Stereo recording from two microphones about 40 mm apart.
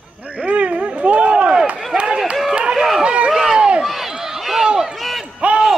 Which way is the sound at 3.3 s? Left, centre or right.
Centre.